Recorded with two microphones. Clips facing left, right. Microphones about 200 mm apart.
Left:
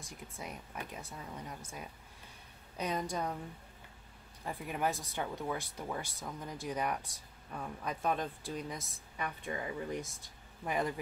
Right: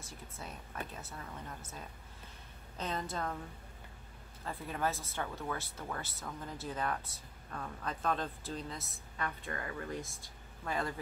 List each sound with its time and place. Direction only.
0.0 s speech: 15° left (ahead or behind)
2.8 s speech: 15° left (ahead or behind)
4.5 s speech: 15° left (ahead or behind)